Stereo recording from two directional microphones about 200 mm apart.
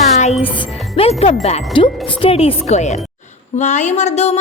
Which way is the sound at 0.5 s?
25° left (ahead or behind).